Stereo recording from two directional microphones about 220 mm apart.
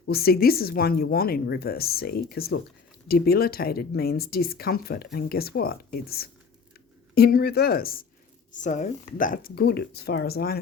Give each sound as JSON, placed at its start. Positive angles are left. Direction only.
{"t": 0.0, "sound": "speech", "side_deg": 45}